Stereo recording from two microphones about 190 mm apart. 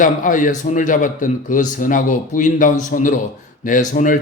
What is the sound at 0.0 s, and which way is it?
A man's voice, 45° left (ahead or behind).